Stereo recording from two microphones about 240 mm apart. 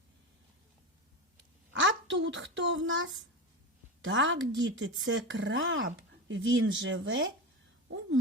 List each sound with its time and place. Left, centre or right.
1.7 s a child's voice: right